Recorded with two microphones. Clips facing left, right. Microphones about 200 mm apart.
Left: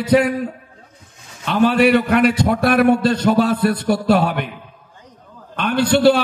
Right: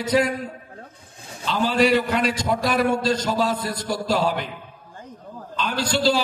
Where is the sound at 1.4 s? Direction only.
60° left (ahead or behind).